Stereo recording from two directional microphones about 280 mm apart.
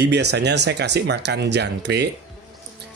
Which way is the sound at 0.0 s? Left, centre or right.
Right.